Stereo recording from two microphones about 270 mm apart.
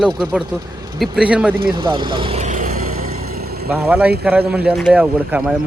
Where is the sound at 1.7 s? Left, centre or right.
Centre; by 3.6 s right.